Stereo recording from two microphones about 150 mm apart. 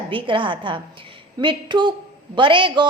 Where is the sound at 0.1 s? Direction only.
35° right (ahead or behind).